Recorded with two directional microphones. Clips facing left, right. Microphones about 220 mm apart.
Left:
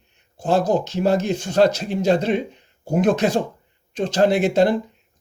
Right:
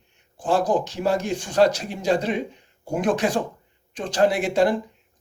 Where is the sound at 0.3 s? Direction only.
25° left (ahead or behind).